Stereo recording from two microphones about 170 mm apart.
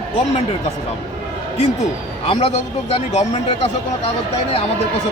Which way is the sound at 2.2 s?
30° left (ahead or behind).